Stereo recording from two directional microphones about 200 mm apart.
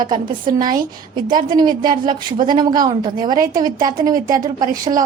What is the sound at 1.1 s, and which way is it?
A woman's voice, 25° right (ahead or behind).